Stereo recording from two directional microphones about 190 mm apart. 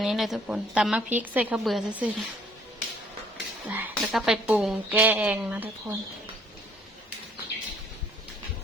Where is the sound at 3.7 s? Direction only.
5° right (ahead or behind).